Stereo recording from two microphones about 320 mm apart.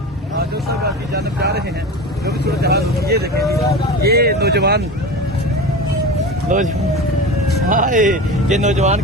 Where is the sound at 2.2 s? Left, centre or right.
Right.